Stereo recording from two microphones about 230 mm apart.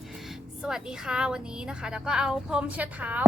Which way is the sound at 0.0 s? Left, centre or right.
Centre.